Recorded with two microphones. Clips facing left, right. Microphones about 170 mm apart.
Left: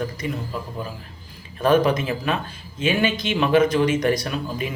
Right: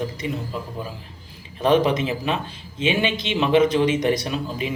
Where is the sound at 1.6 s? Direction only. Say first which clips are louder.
Even; 20° right (ahead or behind).